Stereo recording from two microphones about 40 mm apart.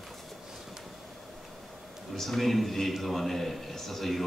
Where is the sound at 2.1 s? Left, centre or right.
Centre.